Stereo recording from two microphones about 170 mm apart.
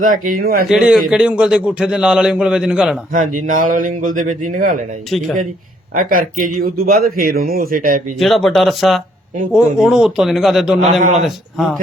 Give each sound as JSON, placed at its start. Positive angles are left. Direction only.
{"t": 0.0, "sound": "speech", "side_deg": -55}
{"t": 0.7, "sound": "a man's voice", "side_deg": -5}
{"t": 3.1, "sound": "speech", "side_deg": -50}
{"t": 5.9, "sound": "speech", "side_deg": -55}
{"t": 8.2, "sound": "a man's voice", "side_deg": 0}